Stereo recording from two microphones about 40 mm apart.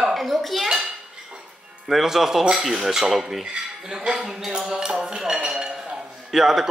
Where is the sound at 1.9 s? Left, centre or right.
Centre.